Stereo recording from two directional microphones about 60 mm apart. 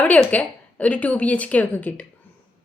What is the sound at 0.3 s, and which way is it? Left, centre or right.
A woman's voice, left.